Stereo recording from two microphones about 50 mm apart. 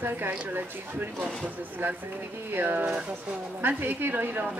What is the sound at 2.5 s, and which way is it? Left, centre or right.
Speech, right.